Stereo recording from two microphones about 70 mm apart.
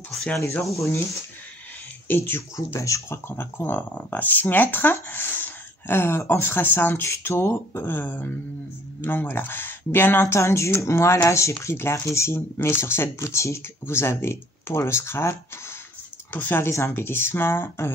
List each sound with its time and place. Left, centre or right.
2.0 s speech: left
2.5 s speech: left
3.3 s speech: left
10.2 s speech: left